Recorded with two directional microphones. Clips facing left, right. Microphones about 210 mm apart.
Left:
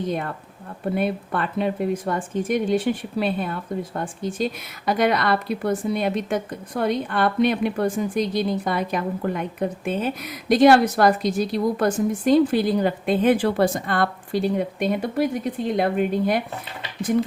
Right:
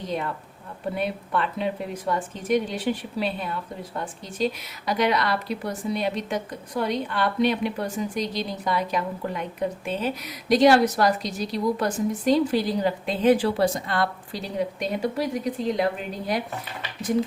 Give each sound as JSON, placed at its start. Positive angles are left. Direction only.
{"t": 0.9, "sound": "a woman's voice", "side_deg": 50}